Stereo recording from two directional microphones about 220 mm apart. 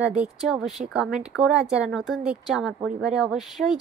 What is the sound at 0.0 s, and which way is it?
Speech, 5° right (ahead or behind).